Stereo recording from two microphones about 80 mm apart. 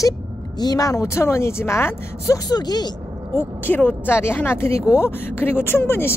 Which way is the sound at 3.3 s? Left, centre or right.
Left.